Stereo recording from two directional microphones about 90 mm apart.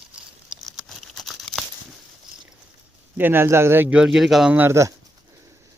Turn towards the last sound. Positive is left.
turn(degrees=-35)  # may be behind; listen again after turning